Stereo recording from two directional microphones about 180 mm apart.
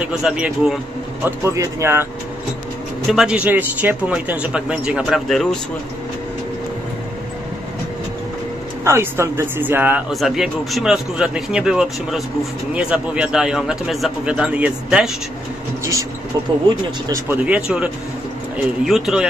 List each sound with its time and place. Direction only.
0.0 s speech: 5° right (ahead or behind)
1.2 s speech: 15° right (ahead or behind)
3.1 s speech: 5° right (ahead or behind)
8.8 s speech: 15° right (ahead or behind)
15.8 s speech: 15° right (ahead or behind)
17.1 s speech: 10° right (ahead or behind)